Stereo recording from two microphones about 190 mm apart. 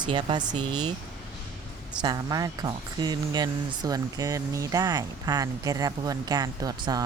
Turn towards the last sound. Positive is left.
turn(degrees=-20)  # may be behind; listen again after turning